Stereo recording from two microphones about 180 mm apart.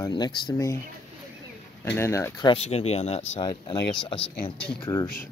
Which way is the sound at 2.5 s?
35° left (ahead or behind).